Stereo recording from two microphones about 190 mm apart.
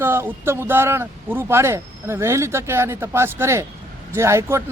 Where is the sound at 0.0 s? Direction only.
10° right (ahead or behind).